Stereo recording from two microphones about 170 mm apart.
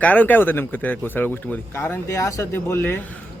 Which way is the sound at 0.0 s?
10° left (ahead or behind).